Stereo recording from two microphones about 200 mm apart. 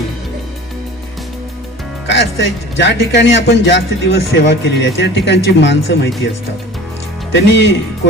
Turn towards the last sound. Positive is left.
turn(degrees=60)  # may be behind; listen again after turning